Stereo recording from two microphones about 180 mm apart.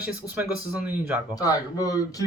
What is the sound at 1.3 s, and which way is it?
Speech, 20° left (ahead or behind).